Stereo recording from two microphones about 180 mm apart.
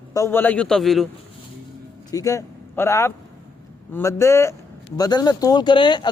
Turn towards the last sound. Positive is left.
turn(degrees=25)  # may be behind; listen again after turning